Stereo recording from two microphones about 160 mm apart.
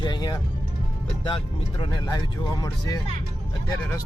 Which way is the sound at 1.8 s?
25° left (ahead or behind).